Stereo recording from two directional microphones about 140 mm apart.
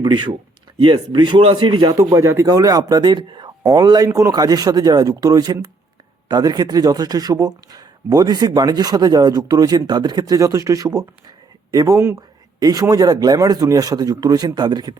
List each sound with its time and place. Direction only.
0.0 s speech: 30° right (ahead or behind)
2.0 s speech: 20° right (ahead or behind)